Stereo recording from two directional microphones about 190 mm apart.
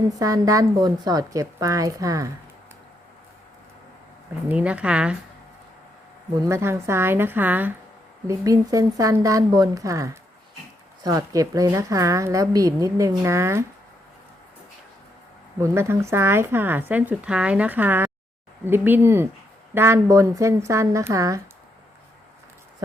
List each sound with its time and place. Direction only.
0.2 s a woman's voice: 20° right (ahead or behind)
4.4 s a woman's voice: 5° right (ahead or behind)
6.3 s a woman's voice: 15° right (ahead or behind)
15.6 s a woman's voice: 15° right (ahead or behind)